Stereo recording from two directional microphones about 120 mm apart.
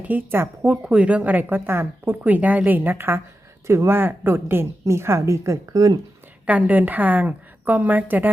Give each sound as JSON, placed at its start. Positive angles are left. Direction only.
{"t": 0.1, "sound": "a woman's voice", "side_deg": -15}
{"t": 6.4, "sound": "a woman's voice", "side_deg": -10}